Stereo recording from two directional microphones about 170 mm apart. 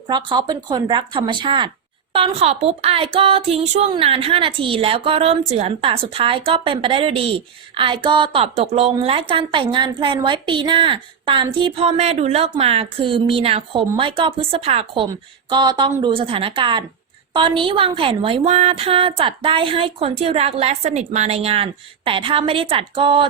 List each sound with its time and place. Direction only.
0.1 s a woman's voice: 25° right (ahead or behind)